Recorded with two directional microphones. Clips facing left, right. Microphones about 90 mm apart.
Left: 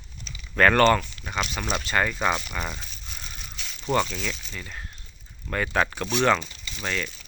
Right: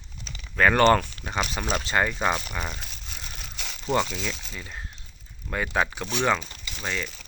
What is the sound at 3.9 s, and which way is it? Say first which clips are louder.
Speech: left 1 dB; 15° right (ahead or behind).